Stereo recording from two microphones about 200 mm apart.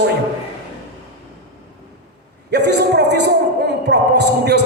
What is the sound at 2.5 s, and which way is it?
A man's voice, 60° right (ahead or behind).